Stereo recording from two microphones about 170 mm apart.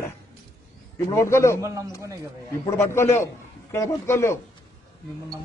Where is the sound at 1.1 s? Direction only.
15° left (ahead or behind).